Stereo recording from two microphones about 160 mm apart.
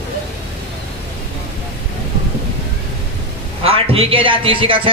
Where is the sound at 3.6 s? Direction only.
40° right (ahead or behind).